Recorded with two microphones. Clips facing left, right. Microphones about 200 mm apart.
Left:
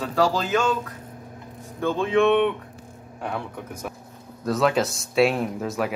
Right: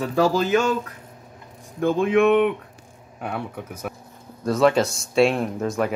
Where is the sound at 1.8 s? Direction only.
15° right (ahead or behind).